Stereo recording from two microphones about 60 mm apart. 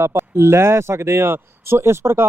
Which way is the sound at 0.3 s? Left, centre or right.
Right.